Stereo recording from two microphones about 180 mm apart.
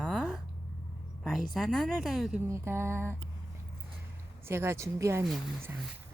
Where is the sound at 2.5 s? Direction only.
15° right (ahead or behind).